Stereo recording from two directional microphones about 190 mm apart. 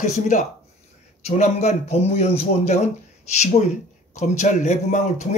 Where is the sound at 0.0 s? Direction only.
40° left (ahead or behind).